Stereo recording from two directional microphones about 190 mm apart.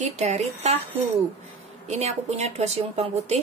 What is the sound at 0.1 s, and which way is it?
Speech, 35° right (ahead or behind).